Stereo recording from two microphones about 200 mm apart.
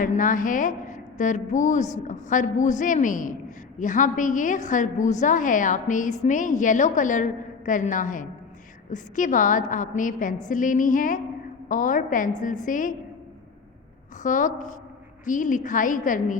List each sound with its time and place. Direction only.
0.0 s a woman's voice: 40° left (ahead or behind)
14.2 s a woman's voice: 40° left (ahead or behind)